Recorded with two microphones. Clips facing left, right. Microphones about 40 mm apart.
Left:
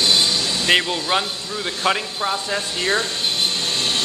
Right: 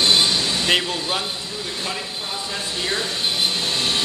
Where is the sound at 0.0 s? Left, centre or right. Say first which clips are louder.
Right 1 dB; centre.